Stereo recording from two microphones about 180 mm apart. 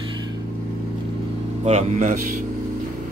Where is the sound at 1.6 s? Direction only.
40° right (ahead or behind).